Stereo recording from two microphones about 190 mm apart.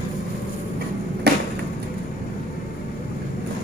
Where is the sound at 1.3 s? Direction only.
60° right (ahead or behind).